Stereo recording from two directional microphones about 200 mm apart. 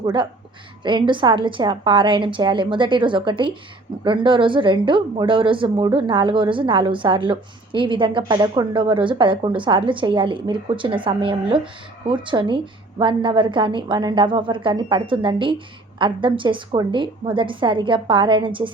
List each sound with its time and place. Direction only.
0.0 s a woman's voice: 20° right (ahead or behind)